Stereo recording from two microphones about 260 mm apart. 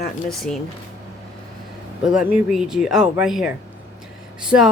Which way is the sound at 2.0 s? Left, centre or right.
Centre.